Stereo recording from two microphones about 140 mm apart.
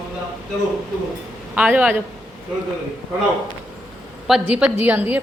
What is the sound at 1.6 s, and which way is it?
Speech, 10° right (ahead or behind).